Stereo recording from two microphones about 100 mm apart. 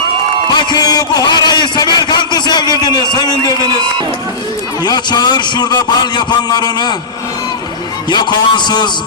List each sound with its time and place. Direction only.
0.7 s a sound: 40° left (ahead or behind)
2.8 s a man's voice: 50° left (ahead or behind)
4.8 s a man's voice: 45° left (ahead or behind)
8.1 s a man's voice: 45° left (ahead or behind)